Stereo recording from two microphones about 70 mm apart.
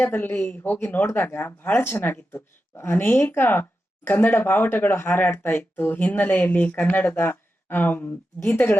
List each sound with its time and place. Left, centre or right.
0.0 s speech: left